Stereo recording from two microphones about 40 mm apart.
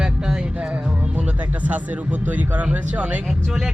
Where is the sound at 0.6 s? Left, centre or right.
Right.